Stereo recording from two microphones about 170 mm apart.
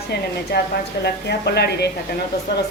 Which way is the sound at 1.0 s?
75° left (ahead or behind).